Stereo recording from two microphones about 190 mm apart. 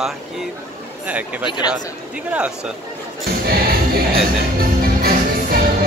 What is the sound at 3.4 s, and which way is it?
Music, 55° right (ahead or behind).